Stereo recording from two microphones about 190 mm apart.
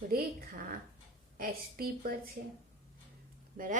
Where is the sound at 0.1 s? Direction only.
50° right (ahead or behind).